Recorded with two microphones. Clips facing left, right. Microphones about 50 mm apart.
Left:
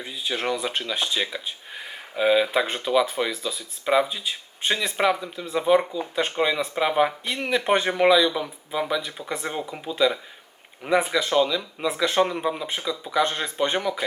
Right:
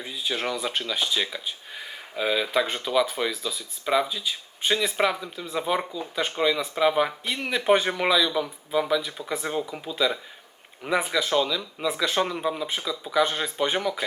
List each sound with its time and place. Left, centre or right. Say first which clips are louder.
0.0 s speech: left 1 dB; centre
6.2 s speech: right 1 dB; centre